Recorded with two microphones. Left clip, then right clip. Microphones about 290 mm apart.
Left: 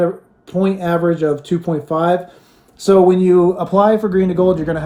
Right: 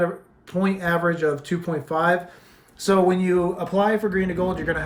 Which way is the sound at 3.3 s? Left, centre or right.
Left.